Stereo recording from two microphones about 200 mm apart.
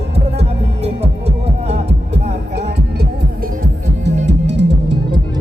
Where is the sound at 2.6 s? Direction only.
55° right (ahead or behind).